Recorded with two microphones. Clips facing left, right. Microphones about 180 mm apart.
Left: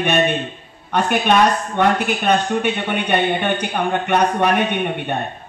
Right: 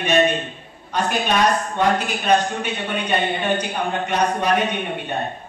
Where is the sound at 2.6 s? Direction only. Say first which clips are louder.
Left 5 dB; 60° left (ahead or behind).